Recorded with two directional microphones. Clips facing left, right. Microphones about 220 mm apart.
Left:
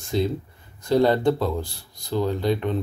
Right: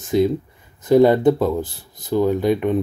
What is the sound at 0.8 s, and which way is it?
Speech, 20° right (ahead or behind).